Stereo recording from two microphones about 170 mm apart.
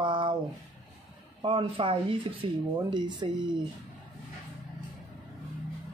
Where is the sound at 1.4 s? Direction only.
30° right (ahead or behind).